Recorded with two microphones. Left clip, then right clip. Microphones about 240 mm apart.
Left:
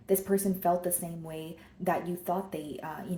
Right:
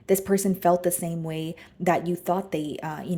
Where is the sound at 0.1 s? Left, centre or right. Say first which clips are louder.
Right 5 dB; right.